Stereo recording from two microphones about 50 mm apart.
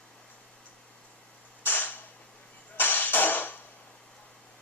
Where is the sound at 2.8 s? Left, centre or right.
Left.